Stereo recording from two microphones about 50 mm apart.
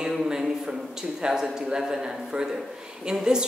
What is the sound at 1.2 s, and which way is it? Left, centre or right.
A woman's voice, centre.